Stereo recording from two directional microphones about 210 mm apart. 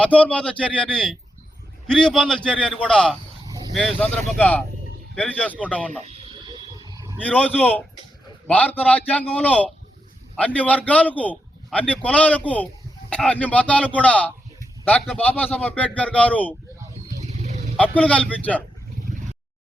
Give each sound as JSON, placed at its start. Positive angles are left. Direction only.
{"t": 0.0, "sound": "a man's voice", "side_deg": 5}
{"t": 6.1, "sound": "a sound", "side_deg": -20}
{"t": 7.2, "sound": "a man's voice", "side_deg": 5}
{"t": 17.2, "sound": "dog", "side_deg": -35}
{"t": 17.7, "sound": "a man's voice", "side_deg": 5}